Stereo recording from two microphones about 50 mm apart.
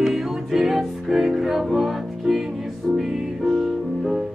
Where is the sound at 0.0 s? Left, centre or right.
Centre.